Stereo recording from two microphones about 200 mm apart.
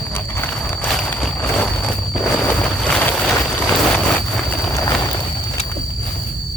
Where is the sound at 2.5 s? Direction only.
5° left (ahead or behind).